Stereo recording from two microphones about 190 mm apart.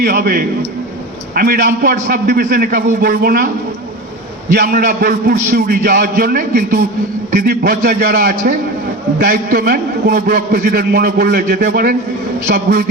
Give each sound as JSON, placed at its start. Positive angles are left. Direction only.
{"t": 0.0, "sound": "a man's voice", "side_deg": -50}
{"t": 4.5, "sound": "a man's voice", "side_deg": -50}